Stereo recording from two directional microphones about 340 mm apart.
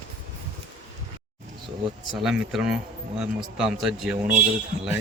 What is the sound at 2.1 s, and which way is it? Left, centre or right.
Speech, centre.